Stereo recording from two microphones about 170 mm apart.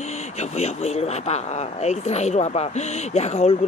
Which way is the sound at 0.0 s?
40° left (ahead or behind).